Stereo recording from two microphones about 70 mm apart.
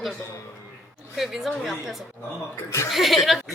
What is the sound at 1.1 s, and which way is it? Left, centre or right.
A woman's voice, centre.